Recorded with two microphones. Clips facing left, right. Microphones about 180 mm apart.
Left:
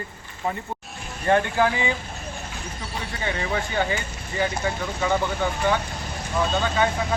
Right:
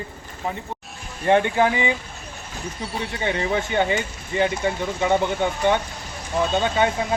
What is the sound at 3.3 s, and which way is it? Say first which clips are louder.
Speech: right 4 dB; 20° right (ahead or behind).